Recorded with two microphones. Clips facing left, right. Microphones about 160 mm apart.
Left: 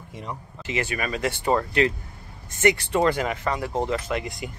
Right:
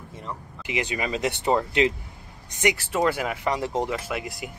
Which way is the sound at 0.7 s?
15° right (ahead or behind).